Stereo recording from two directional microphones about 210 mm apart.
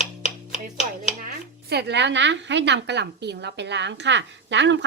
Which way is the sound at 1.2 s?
50° right (ahead or behind).